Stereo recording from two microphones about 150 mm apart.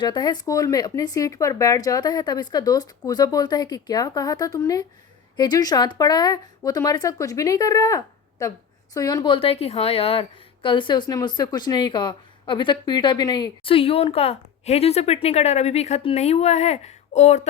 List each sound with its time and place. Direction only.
0.0 s a woman's voice: 30° left (ahead or behind); by 17.4 s 50° left (ahead or behind)